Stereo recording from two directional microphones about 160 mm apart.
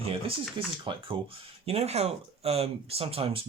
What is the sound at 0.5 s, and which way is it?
Speech, 30° right (ahead or behind).